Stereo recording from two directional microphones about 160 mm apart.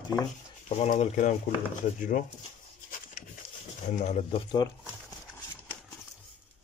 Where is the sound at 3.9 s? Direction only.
45° left (ahead or behind).